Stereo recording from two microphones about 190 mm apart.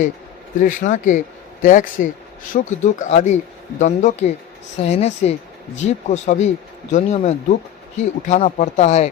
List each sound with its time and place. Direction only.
0.6 s speech: 45° left (ahead or behind)